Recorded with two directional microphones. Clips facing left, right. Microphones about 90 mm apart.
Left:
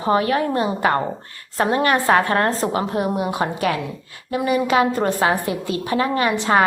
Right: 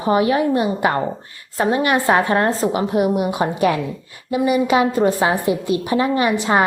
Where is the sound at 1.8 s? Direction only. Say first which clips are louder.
Even; 15° right (ahead or behind).